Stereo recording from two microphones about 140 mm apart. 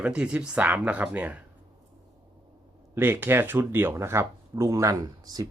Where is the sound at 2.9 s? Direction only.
15° right (ahead or behind).